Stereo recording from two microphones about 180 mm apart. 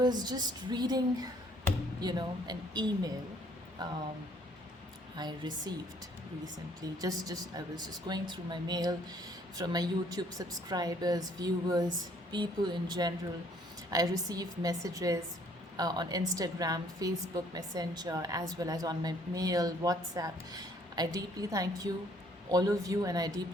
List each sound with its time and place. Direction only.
0.0 s a woman's voice: 25° right (ahead or behind)
5.1 s a woman's voice: 25° right (ahead or behind)
7.0 s a woman's voice: 20° right (ahead or behind)